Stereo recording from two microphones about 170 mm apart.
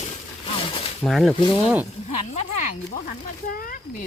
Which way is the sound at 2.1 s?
40° left (ahead or behind).